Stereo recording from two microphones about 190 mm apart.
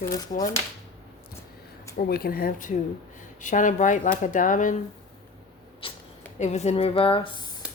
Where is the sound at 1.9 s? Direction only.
50° left (ahead or behind).